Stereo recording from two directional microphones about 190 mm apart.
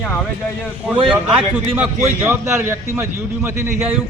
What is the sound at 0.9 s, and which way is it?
Speech, 30° right (ahead or behind).